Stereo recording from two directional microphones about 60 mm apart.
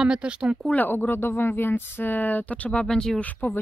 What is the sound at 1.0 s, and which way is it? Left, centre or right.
Speech, left.